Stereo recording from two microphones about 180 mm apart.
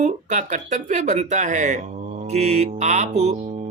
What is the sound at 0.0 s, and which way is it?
Speech, 40° right (ahead or behind).